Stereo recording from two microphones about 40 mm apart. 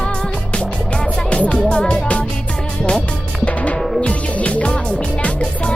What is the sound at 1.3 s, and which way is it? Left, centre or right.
Music, left.